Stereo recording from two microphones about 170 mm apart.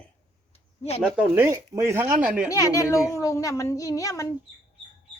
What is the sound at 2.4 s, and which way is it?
A child's voice, 20° left (ahead or behind).